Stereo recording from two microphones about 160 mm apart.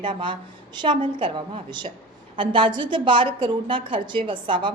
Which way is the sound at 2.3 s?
30° right (ahead or behind).